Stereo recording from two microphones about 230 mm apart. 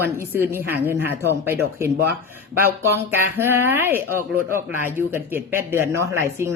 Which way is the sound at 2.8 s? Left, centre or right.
Centre.